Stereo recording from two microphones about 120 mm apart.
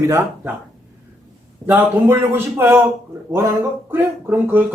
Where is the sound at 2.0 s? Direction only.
20° right (ahead or behind).